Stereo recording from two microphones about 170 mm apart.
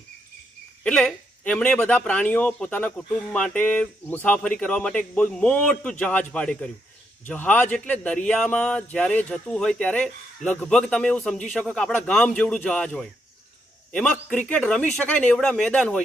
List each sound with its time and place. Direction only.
0.8 s a man's voice: 5° left (ahead or behind)
14.3 s a man's voice: 5° left (ahead or behind)